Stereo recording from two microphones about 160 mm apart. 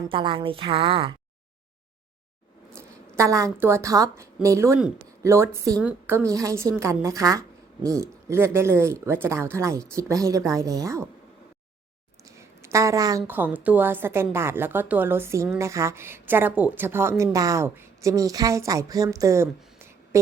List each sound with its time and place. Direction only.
0.1 s a woman's voice: 30° right (ahead or behind)
2.7 s a woman's voice: 20° right (ahead or behind)
12.2 s a woman's voice: 20° right (ahead or behind)